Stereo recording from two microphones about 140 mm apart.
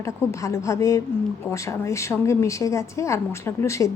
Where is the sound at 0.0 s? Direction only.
20° left (ahead or behind).